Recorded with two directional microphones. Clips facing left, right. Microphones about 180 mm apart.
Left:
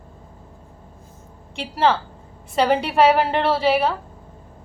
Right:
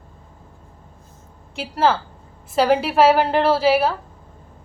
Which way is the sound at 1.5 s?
5° right (ahead or behind).